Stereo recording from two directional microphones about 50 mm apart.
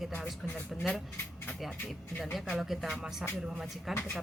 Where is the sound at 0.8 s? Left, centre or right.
Centre.